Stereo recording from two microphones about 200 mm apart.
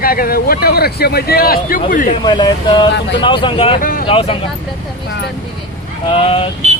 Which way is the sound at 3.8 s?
45° left (ahead or behind).